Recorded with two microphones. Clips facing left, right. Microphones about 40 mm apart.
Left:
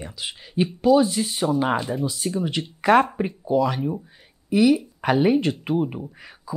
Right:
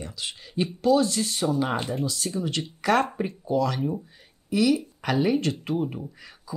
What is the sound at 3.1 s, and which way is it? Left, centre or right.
Speech, centre.